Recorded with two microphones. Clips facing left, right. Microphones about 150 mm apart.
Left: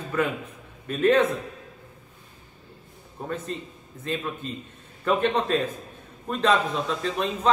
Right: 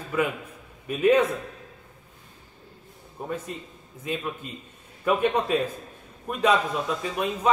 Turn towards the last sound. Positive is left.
turn(degrees=-10)  # may be behind; listen again after turning